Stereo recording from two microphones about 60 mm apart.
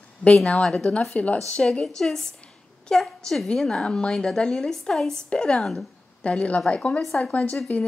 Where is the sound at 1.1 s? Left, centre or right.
Left.